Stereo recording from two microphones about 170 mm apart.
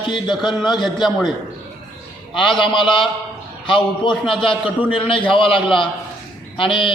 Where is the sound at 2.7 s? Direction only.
30° left (ahead or behind).